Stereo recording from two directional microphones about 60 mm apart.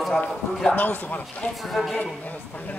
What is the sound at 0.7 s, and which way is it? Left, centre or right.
Speech, left.